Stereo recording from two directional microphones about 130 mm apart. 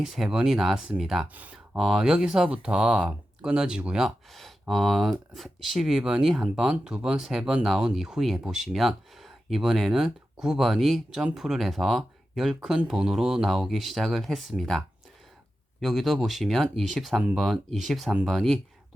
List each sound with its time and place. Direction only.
0.0 s speech: 5° right (ahead or behind)